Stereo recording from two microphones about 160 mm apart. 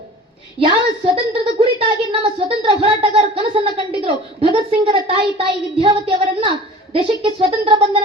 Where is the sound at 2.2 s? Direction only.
35° right (ahead or behind).